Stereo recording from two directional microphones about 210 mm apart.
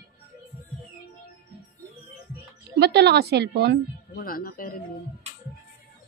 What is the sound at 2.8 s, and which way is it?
Speech, 55° right (ahead or behind).